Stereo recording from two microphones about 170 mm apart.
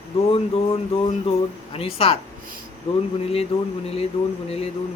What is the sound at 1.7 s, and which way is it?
Speech, 35° left (ahead or behind).